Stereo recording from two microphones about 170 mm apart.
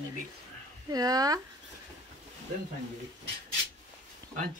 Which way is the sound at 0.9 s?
20° right (ahead or behind).